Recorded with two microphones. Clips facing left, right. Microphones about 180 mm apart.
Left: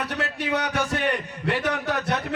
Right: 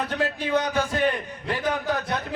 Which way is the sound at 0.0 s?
75° left (ahead or behind).